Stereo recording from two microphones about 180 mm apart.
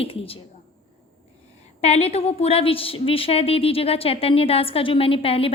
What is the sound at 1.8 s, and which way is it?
A woman's voice, 35° left (ahead or behind).